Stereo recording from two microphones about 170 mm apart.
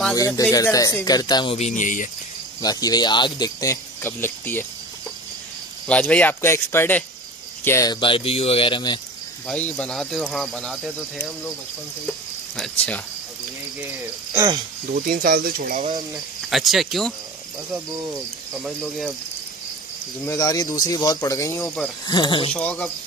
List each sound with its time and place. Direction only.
0.4 s speech: 20° left (ahead or behind)
1.6 s speech: 50° left (ahead or behind)
2.6 s speech: 25° left (ahead or behind)
5.9 s speech: 5° left (ahead or behind); by 9.0 s 30° left (ahead or behind)
9.5 s speech: 10° left (ahead or behind)
12.1 s cricket: centre (ahead or behind)
14.3 s speech: 20° right (ahead or behind)
15.0 s speech: 60° right (ahead or behind)
16.4 s speech: centre (ahead or behind)
18.6 s speech: centre (ahead or behind)
20.2 s speech: 20° left (ahead or behind)
21.6 s speech: 5° left (ahead or behind)
22.0 s speech: 25° left (ahead or behind)
22.5 s speech: 5° left (ahead or behind)